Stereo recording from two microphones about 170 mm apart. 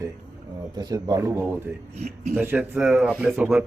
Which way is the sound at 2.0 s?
40° right (ahead or behind).